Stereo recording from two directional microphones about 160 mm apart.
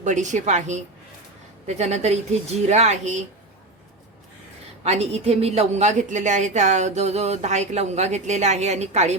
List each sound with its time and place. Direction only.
0.0 s a woman's voice: 50° right (ahead or behind)
4.8 s a woman's voice: 40° right (ahead or behind)